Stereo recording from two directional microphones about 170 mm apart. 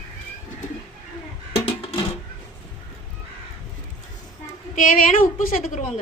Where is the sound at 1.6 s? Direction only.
35° left (ahead or behind).